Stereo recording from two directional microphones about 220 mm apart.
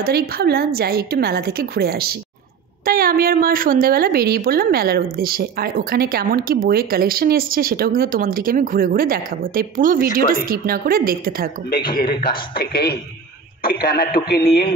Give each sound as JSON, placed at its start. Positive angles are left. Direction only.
{"t": 0.0, "sound": "a woman's voice", "side_deg": -45}
{"t": 11.9, "sound": "a man's voice", "side_deg": 40}